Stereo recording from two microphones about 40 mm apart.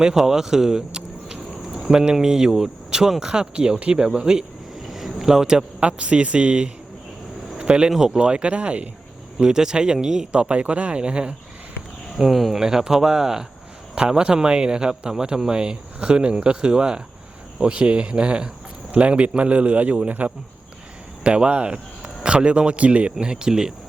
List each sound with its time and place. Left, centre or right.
0.0 s a sound: centre
1.8 s speech: centre
4.9 s a sound: centre
5.8 s speech: right
9.4 s speech: centre
10.5 s speech: right
12.1 s speech: centre
12.6 s a man's voice: centre; by 20.3 s right
21.2 s speech: right
23.2 s speech: centre